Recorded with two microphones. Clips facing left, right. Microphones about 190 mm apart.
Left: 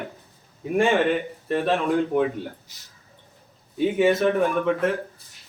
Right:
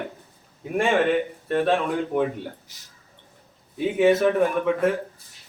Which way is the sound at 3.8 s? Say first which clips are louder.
Right 1 dB; centre (ahead or behind).